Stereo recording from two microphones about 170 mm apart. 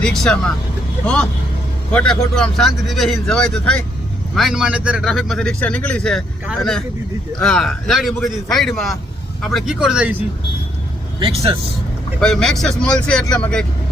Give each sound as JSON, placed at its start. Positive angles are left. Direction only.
{"t": 0.0, "sound": "speech", "side_deg": 5}
{"t": 11.2, "sound": "speech", "side_deg": -35}
{"t": 12.2, "sound": "speech", "side_deg": 5}